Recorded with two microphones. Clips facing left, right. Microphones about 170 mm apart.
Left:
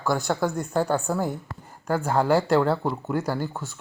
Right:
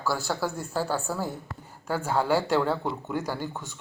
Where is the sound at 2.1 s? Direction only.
45° left (ahead or behind).